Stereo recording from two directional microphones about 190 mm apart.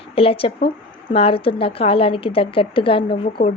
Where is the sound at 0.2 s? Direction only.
30° left (ahead or behind).